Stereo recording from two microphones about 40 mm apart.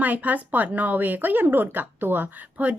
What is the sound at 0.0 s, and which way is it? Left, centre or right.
A woman's voice, right.